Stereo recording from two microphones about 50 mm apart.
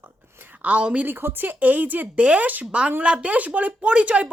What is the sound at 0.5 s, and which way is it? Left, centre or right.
Speech, right.